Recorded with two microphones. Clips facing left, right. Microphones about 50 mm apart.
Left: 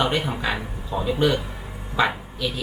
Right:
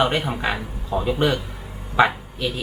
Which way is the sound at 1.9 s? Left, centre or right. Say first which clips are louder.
Right 4 dB; right.